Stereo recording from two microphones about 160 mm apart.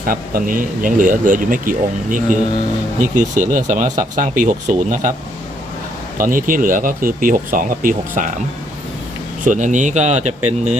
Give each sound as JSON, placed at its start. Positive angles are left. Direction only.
{"t": 0.0, "sound": "speech", "side_deg": -65}
{"t": 6.1, "sound": "speech", "side_deg": -60}
{"t": 9.4, "sound": "speech", "side_deg": -50}